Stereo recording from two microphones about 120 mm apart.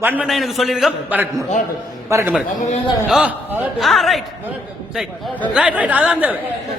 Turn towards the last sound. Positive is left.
turn(degrees=-10)  # may be behind; listen again after turning